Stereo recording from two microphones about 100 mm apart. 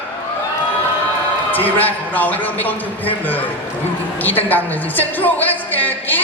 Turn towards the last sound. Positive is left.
turn(degrees=20)  # may be behind; listen again after turning